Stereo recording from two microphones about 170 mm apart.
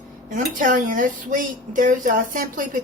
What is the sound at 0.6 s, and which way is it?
A woman's voice, 50° right (ahead or behind).